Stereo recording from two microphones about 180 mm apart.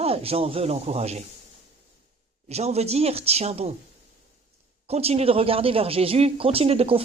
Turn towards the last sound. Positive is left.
turn(degrees=-35)  # may be behind; listen again after turning